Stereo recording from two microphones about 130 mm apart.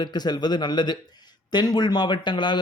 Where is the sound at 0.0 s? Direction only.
35° left (ahead or behind).